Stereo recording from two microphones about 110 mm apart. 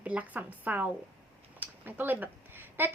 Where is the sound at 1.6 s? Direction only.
15° right (ahead or behind).